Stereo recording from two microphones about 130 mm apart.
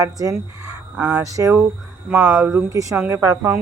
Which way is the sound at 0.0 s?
25° right (ahead or behind).